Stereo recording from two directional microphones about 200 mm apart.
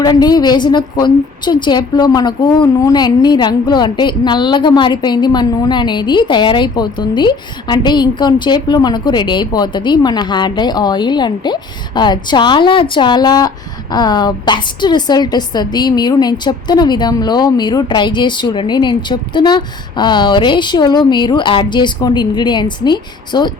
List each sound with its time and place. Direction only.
0.0 s a woman's voice: 20° left (ahead or behind)